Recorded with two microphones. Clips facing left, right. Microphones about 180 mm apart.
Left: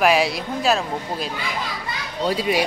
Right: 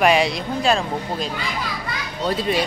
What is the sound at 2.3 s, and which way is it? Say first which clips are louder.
Speech: even; 10° left (ahead or behind).